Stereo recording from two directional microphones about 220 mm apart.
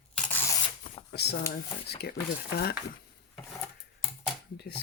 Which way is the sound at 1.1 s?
50° left (ahead or behind).